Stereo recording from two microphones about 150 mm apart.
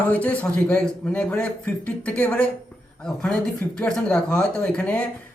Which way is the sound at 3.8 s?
5° left (ahead or behind).